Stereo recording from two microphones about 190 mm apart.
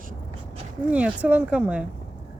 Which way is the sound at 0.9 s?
5° right (ahead or behind).